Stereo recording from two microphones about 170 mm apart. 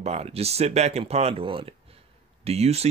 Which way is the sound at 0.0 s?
40° right (ahead or behind).